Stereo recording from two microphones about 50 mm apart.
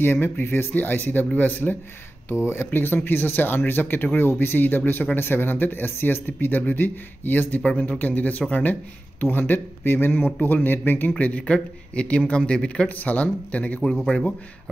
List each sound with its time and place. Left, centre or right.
0.0 s speech: left
7.6 s speech: left
9.2 s speech: left
12.8 s speech: left